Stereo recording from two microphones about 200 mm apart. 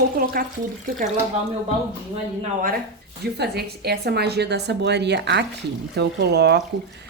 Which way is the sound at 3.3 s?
55° right (ahead or behind).